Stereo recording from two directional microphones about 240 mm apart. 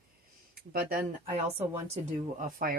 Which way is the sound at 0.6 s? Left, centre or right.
Right.